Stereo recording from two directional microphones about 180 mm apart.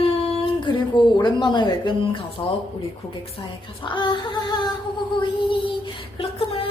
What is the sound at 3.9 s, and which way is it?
Speech, 25° left (ahead or behind).